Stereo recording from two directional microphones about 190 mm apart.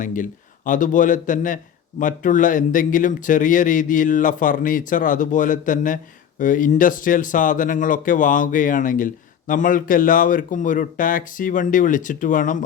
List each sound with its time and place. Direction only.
0.0 s speech: 45° left (ahead or behind)